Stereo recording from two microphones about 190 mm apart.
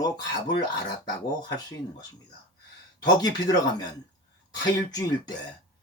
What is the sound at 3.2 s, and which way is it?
Speech, 20° left (ahead or behind).